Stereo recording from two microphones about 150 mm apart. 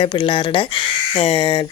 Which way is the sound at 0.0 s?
35° left (ahead or behind).